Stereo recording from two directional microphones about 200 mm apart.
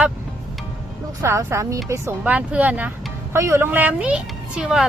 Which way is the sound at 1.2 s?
15° right (ahead or behind).